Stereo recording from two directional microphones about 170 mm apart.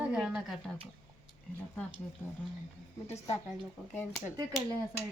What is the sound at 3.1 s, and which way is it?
Speech, 40° left (ahead or behind).